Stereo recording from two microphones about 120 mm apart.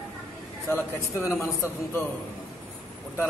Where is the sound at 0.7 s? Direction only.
20° left (ahead or behind).